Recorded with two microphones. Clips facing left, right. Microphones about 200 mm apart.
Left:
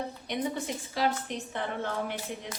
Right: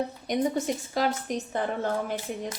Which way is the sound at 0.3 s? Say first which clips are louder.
Right 6 dB; 45° right (ahead or behind).